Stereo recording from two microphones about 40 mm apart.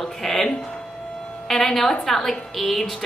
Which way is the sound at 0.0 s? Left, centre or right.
Centre.